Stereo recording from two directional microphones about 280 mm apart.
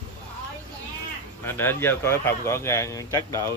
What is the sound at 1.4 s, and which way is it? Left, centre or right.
Speech, centre.